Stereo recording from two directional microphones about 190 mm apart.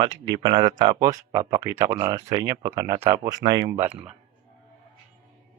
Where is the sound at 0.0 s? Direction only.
25° right (ahead or behind).